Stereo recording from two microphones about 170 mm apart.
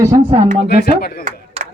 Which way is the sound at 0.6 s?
70° left (ahead or behind).